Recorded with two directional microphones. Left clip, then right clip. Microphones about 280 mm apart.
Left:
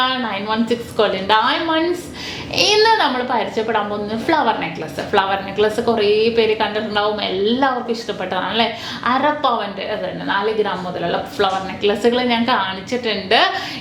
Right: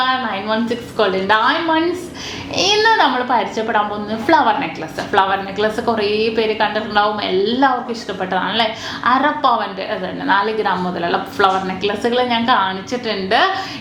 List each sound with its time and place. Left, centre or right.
0.0 s a woman's voice: left
2.6 s a woman's voice: left
9.0 s a woman's voice: left
11.8 s a woman's voice: left